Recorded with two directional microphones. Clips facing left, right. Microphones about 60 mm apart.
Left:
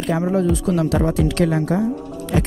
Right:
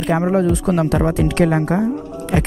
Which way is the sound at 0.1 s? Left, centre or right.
Right.